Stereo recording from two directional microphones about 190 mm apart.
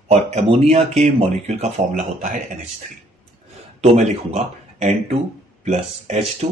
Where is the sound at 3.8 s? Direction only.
35° right (ahead or behind).